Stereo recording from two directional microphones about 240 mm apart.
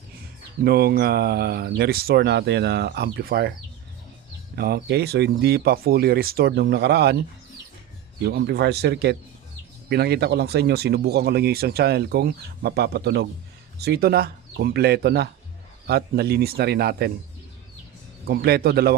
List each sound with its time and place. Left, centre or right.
0.6 s speech: right
4.5 s speech: right
8.2 s speech: right
18.3 s speech: right